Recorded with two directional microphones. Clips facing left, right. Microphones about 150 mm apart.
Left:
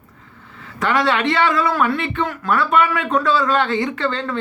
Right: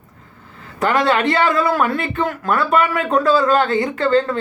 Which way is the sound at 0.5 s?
35° right (ahead or behind).